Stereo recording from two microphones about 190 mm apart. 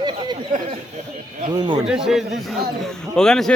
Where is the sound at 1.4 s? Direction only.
25° right (ahead or behind).